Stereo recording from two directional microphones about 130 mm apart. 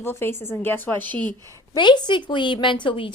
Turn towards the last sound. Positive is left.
turn(degrees=40)  # may be behind; listen again after turning